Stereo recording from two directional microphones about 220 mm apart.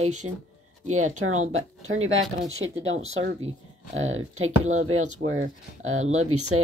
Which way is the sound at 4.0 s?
65° right (ahead or behind).